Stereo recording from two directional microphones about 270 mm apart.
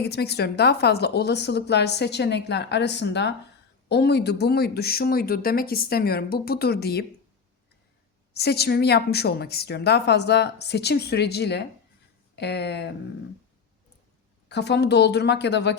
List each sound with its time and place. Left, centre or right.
0.0 s a woman's voice: left
8.4 s a woman's voice: left
14.5 s a woman's voice: left